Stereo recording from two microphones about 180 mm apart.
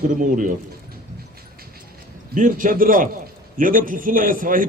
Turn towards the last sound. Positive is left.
turn(degrees=-50)  # may be behind; listen again after turning